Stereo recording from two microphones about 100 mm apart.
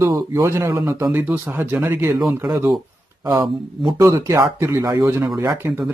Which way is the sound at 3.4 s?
55° right (ahead or behind).